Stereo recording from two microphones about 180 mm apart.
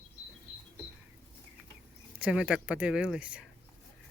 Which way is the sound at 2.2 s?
5° right (ahead or behind).